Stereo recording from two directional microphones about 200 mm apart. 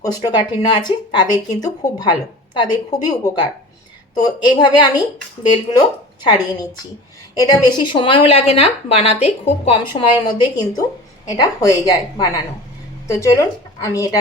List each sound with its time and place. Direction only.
0.0 s speech: 20° left (ahead or behind)
4.4 s speech: 20° left (ahead or behind)
6.2 s speech: 20° left (ahead or behind)